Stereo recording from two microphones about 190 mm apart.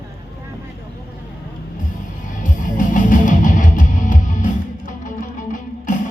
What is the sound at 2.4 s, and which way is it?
Music, 45° left (ahead or behind).